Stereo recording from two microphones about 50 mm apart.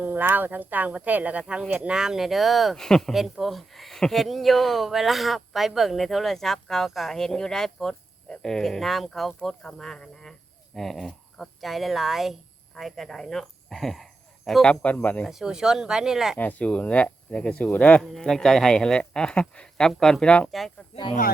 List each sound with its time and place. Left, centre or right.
0.0 s speech: right
1.9 s speech: centre
2.7 s a man's voice: centre
3.1 s speech: centre
14.6 s speech: left
15.3 s speech: centre
16.4 s speech: left
18.0 s a man's voice: centre